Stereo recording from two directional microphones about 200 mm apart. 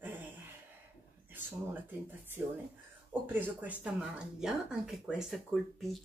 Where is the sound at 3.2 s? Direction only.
10° right (ahead or behind).